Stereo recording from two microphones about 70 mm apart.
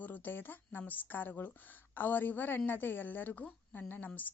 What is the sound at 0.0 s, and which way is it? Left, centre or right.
A woman's voice, left.